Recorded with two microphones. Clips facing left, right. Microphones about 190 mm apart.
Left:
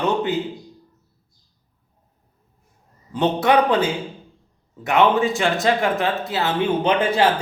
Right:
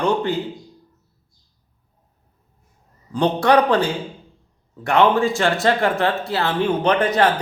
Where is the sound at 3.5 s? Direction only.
20° left (ahead or behind).